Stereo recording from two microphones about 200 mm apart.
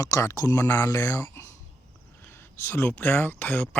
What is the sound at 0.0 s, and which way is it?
Speech, 20° left (ahead or behind).